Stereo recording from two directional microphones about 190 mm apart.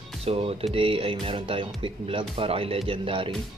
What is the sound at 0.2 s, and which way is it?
Speech, 30° right (ahead or behind).